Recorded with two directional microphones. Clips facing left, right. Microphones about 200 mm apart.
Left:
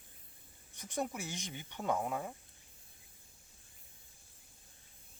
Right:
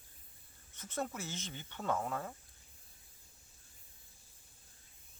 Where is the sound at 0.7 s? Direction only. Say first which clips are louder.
Left 2 dB; 15° left (ahead or behind).